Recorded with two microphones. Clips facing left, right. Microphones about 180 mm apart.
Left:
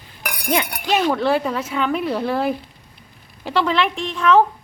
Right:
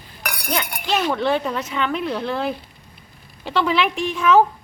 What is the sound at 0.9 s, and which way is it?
A woman's voice, centre (ahead or behind).